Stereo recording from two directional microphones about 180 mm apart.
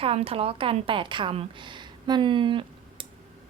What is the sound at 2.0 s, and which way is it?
Child singing, 25° right (ahead or behind).